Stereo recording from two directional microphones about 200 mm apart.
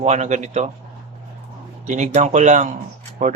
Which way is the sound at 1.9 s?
35° right (ahead or behind).